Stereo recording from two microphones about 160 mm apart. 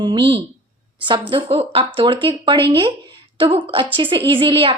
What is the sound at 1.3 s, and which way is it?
A woman's voice, 35° right (ahead or behind).